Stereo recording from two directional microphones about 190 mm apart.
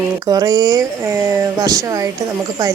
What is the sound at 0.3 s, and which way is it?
Speech, 20° right (ahead or behind).